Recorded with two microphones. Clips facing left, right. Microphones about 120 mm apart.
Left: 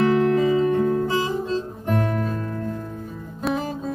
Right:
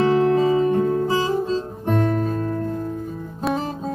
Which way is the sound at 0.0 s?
30° right (ahead or behind).